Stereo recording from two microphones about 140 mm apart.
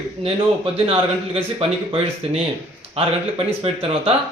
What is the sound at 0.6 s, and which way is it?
Speech, 45° right (ahead or behind).